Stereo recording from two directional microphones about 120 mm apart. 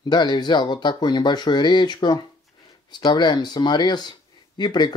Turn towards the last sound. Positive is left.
turn(degrees=35)  # may be behind; listen again after turning